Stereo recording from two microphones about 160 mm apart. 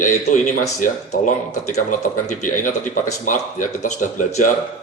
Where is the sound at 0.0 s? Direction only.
55° left (ahead or behind).